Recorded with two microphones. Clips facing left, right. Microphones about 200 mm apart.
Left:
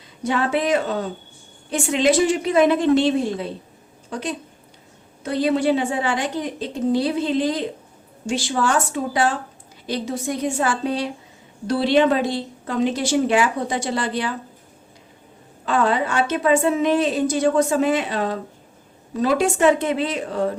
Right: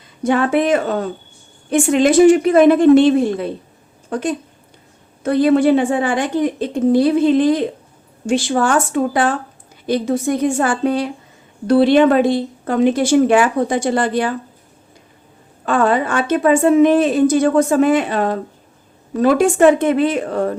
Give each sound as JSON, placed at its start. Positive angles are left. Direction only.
{"t": 0.3, "sound": "a woman's voice", "side_deg": -50}
{"t": 15.6, "sound": "a woman's voice", "side_deg": -50}